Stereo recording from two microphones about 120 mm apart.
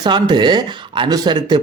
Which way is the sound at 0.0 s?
40° right (ahead or behind).